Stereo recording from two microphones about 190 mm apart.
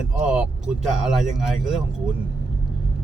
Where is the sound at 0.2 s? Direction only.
5° right (ahead or behind).